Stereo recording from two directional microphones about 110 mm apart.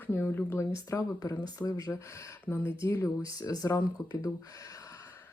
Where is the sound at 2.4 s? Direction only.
20° left (ahead or behind).